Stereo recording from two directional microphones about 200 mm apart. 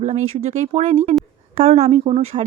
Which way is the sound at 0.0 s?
35° right (ahead or behind).